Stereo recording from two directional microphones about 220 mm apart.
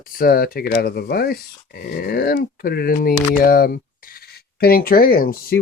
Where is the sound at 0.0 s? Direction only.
40° left (ahead or behind).